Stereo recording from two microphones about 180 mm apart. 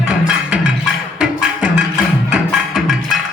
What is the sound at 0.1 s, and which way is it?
Music, 5° right (ahead or behind).